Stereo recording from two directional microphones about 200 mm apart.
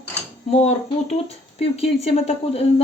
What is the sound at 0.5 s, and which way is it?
A woman's voice, 30° left (ahead or behind).